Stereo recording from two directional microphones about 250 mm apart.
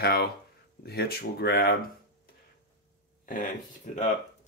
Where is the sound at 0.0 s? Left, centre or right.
Left.